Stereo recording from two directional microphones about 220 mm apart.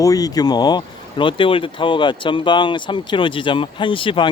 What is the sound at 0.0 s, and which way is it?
Speech, 15° left (ahead or behind).